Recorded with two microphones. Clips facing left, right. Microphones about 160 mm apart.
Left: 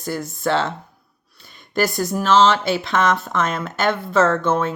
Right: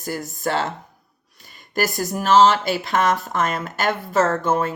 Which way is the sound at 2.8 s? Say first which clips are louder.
Left 1 dB; 40° right (ahead or behind).